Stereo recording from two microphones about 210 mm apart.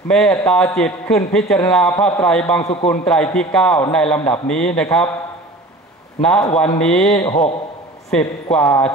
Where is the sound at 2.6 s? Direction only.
30° left (ahead or behind).